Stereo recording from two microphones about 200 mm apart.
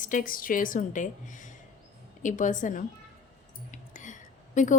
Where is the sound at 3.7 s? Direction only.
40° left (ahead or behind).